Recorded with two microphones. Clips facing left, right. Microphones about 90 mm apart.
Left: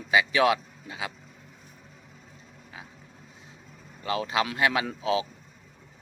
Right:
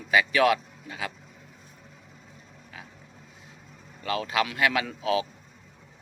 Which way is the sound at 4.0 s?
25° left (ahead or behind).